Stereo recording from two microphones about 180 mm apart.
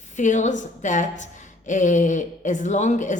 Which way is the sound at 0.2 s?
45° left (ahead or behind).